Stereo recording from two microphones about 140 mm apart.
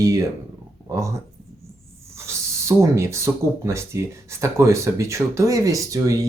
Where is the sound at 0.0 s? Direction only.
20° right (ahead or behind).